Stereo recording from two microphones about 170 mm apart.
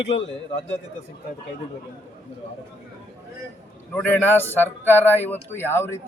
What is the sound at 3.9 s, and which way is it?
Speech, 10° left (ahead or behind).